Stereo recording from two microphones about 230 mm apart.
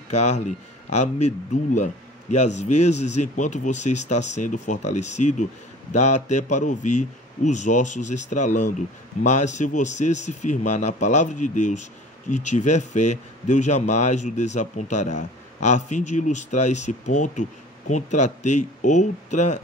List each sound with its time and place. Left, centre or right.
0.9 s speech: left